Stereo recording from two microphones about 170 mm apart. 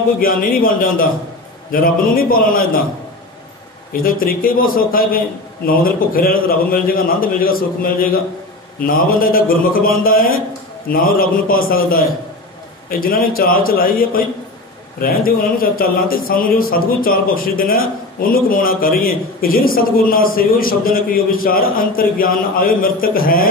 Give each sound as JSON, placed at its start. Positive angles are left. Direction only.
{"t": 0.2, "sound": "a man's voice", "side_deg": 55}
{"t": 3.9, "sound": "a man's voice", "side_deg": 60}